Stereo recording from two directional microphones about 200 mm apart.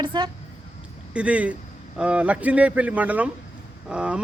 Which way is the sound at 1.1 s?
5° right (ahead or behind).